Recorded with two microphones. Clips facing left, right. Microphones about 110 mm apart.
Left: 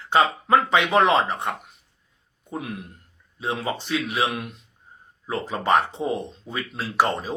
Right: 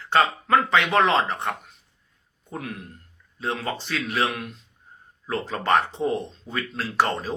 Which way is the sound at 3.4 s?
15° left (ahead or behind).